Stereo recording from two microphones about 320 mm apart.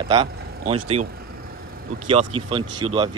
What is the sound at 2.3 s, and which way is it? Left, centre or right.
Speech, centre.